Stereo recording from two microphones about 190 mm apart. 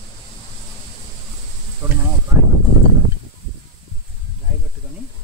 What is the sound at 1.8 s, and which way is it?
Sizzle, 15° right (ahead or behind).